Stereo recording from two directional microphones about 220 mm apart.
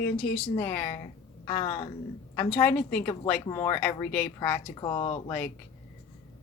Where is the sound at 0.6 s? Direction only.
10° left (ahead or behind).